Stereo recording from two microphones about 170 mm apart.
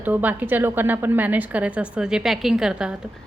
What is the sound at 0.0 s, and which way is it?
A woman's voice, 10° right (ahead or behind).